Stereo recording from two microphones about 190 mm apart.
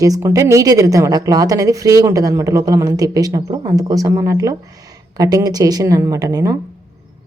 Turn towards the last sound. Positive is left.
turn(degrees=-20)  # may be behind; listen again after turning